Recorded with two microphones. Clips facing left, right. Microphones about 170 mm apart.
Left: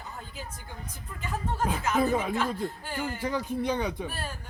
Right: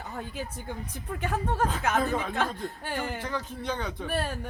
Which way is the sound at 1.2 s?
65° right (ahead or behind).